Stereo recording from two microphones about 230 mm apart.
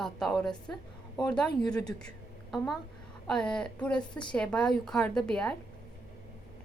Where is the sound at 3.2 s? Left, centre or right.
Centre.